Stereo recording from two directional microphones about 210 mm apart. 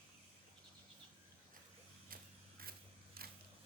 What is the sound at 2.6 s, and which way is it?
Scissors, 45° right (ahead or behind).